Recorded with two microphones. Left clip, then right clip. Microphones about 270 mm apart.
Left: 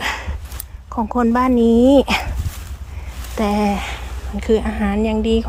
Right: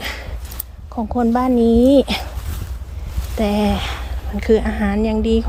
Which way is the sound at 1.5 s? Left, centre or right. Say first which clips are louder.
Right 1 dB; left.